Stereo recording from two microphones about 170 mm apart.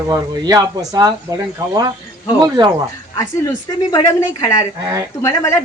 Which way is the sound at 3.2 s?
20° left (ahead or behind).